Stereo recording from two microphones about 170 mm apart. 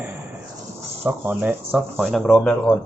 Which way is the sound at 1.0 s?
10° right (ahead or behind).